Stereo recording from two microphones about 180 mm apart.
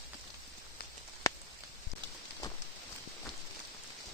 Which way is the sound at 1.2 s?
15° left (ahead or behind).